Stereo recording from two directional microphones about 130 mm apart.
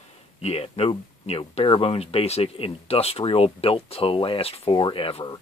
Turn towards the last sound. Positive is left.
turn(degrees=45)  # may be behind; listen again after turning